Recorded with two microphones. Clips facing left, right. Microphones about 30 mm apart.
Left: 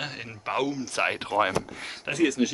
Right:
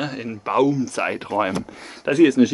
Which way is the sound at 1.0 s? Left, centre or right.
Left.